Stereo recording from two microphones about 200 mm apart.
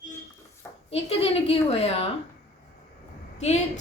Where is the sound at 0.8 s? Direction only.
30° left (ahead or behind).